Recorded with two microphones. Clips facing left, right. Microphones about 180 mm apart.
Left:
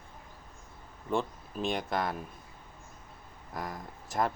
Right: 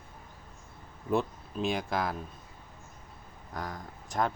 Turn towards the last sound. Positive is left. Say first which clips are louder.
# even
turn(degrees=0)  # may be behind; listen again after turning